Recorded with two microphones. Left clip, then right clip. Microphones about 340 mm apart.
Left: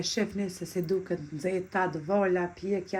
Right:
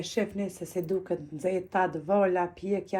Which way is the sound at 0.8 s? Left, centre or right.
Centre.